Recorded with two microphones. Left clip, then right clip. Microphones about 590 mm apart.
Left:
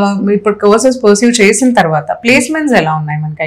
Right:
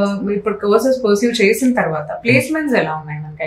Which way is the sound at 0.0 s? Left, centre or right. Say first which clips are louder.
Left 7 dB; left.